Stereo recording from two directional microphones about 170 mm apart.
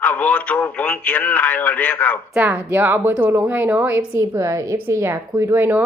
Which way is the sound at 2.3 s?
10° right (ahead or behind).